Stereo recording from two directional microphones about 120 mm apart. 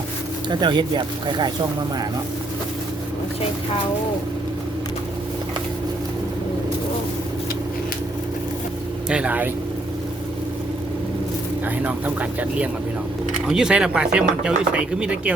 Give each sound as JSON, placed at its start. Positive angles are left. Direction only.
{"t": 0.6, "sound": "speech", "side_deg": -40}
{"t": 9.0, "sound": "speech", "side_deg": -10}
{"t": 11.6, "sound": "speech", "side_deg": -15}